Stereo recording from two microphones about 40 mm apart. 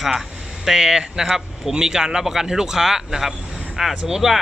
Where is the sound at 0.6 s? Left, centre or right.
Centre.